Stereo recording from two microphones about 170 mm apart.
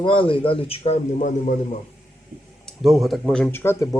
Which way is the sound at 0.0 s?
30° left (ahead or behind).